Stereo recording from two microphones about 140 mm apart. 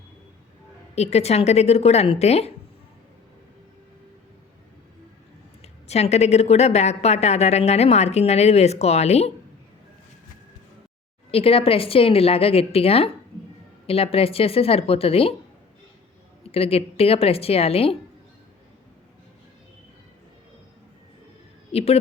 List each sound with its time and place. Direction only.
0.9 s speech: 50° left (ahead or behind)
5.6 s speech: 50° left (ahead or behind)
11.3 s speech: 45° left (ahead or behind)
16.4 s speech: 45° left (ahead or behind)
21.7 s speech: 45° left (ahead or behind)